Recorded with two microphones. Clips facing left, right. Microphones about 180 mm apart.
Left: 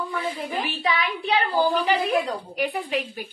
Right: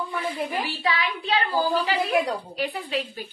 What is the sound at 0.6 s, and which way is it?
A woman's voice, 15° left (ahead or behind).